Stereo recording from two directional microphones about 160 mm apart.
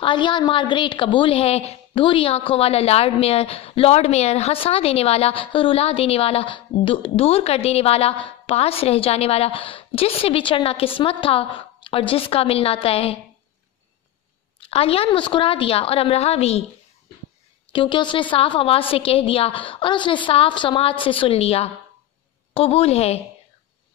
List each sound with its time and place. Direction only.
0.0 s a woman's voice: 30° left (ahead or behind)
14.7 s a woman's voice: 35° left (ahead or behind)
17.7 s a woman's voice: 30° left (ahead or behind)